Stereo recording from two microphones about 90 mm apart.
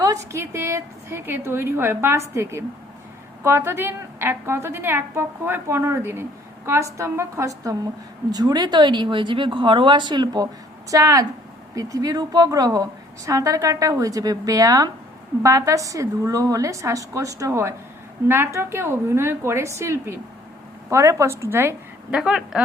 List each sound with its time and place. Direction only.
0.0 s a woman's voice: 35° right (ahead or behind); by 10.5 s 50° right (ahead or behind)
10.9 s a woman's voice: 40° right (ahead or behind)
22.1 s speech: 10° right (ahead or behind)